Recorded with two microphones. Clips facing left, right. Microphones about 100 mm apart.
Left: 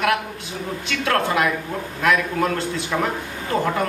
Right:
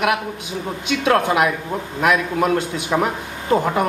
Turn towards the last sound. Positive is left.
turn(degrees=-20)  # may be behind; listen again after turning